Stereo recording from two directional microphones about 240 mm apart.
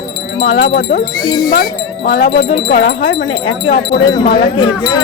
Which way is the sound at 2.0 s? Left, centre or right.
Left.